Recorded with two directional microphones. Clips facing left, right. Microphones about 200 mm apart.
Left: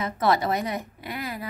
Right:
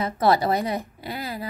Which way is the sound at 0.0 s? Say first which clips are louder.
Right 3 dB; 35° right (ahead or behind).